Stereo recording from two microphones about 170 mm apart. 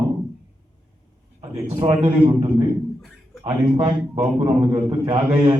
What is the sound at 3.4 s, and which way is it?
A man's voice, 30° right (ahead or behind).